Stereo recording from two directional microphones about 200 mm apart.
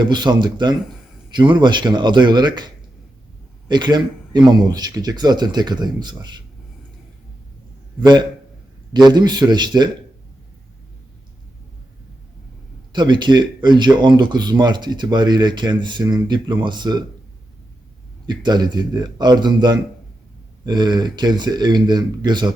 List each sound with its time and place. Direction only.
0.0 s speech: 20° right (ahead or behind)
8.0 s speech: 20° right (ahead or behind)
12.9 s speech: 20° right (ahead or behind)
18.3 s speech: 20° right (ahead or behind)